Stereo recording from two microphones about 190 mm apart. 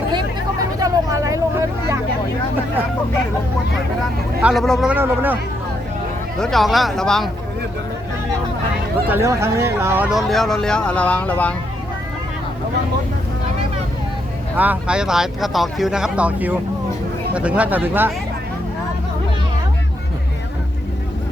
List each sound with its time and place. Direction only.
0.8 s vehicle: 15° right (ahead or behind)
4.4 s a man's voice: centre (ahead or behind)
6.4 s speech: centre (ahead or behind)
9.0 s speech: 10° right (ahead or behind); by 11.5 s 5° left (ahead or behind)
14.5 s a man's voice: 10° right (ahead or behind)